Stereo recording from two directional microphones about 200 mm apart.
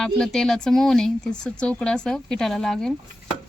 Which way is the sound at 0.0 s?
Centre (ahead or behind).